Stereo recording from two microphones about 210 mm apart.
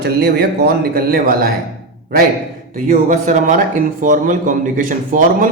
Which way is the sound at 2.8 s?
35° right (ahead or behind).